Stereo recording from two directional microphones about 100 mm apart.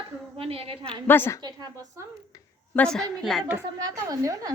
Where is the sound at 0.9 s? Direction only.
20° left (ahead or behind).